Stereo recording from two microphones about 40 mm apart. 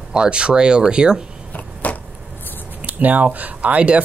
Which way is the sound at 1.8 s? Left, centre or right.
Left.